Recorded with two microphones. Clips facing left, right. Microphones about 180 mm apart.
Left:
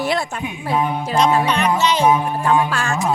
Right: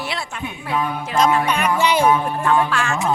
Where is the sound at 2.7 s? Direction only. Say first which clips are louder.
Even; 40° left (ahead or behind).